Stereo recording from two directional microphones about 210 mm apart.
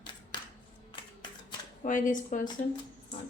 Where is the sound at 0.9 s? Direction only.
20° left (ahead or behind).